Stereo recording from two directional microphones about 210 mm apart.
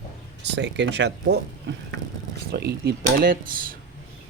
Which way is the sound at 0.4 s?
55° right (ahead or behind).